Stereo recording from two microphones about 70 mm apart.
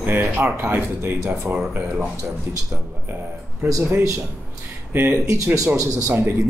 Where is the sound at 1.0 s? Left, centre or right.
Right.